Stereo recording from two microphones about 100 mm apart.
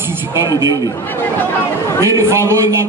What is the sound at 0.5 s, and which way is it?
Speech, 45° left (ahead or behind).